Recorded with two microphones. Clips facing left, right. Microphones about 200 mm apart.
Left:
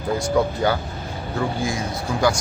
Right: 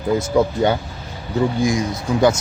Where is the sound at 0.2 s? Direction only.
20° right (ahead or behind).